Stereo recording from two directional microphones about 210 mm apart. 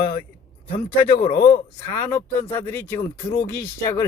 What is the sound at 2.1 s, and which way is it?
Speech, 10° left (ahead or behind).